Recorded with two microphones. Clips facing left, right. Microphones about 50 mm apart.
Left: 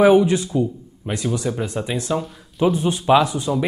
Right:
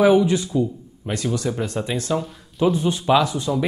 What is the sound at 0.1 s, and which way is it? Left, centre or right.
Speech, left.